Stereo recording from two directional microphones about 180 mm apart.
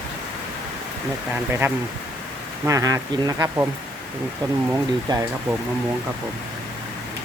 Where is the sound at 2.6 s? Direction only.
20° right (ahead or behind).